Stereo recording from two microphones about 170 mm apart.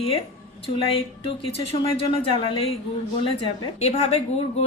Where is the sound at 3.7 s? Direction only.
40° left (ahead or behind).